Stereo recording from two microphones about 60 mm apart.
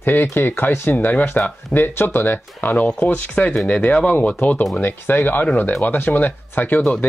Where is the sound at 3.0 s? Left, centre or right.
Left.